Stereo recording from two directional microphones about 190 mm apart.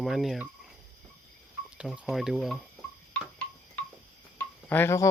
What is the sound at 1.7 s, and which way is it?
Speech, 5° right (ahead or behind).